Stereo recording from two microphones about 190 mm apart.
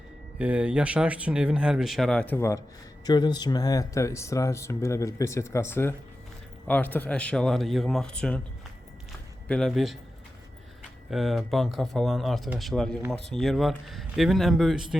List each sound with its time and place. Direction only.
0.3 s speech: 5° right (ahead or behind); by 2.6 s 10° left (ahead or behind)
3.1 s speech: 20° left (ahead or behind); by 8.4 s 5° left (ahead or behind)
9.5 s speech: centre (ahead or behind)
11.1 s speech: centre (ahead or behind)